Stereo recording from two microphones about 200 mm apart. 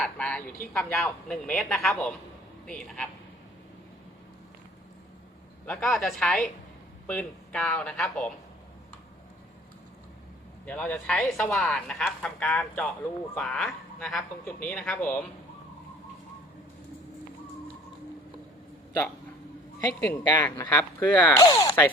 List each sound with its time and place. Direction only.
0.0 s speech: 5° left (ahead or behind)
5.6 s speech: 5° left (ahead or behind)
10.7 s speech: 5° left (ahead or behind)
20.0 s speech: 10° left (ahead or behind)
21.4 s speech: 20° left (ahead or behind)